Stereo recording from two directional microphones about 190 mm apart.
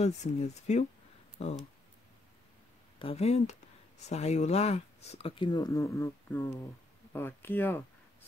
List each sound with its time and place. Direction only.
0.0 s speech: 35° left (ahead or behind)
3.0 s speech: 30° left (ahead or behind); by 7.8 s 10° left (ahead or behind)